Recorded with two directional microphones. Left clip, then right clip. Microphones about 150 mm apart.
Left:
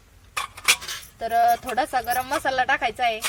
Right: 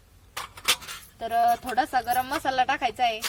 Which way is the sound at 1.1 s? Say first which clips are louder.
Left 3 dB; 10° right (ahead or behind).